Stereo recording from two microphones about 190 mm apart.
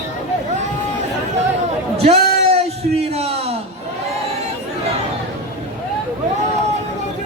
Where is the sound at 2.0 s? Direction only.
35° right (ahead or behind).